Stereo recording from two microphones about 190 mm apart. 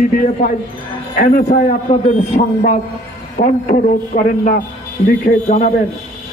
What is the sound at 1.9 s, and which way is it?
A man's voice, 30° left (ahead or behind).